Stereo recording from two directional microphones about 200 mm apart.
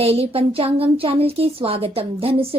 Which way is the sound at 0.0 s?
30° right (ahead or behind).